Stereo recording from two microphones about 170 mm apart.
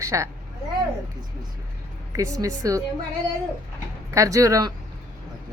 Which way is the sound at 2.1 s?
20° right (ahead or behind).